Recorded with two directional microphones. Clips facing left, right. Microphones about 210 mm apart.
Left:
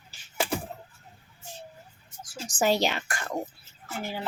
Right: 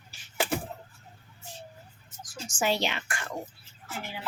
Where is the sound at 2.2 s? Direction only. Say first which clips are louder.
Left 4 dB; 35° left (ahead or behind).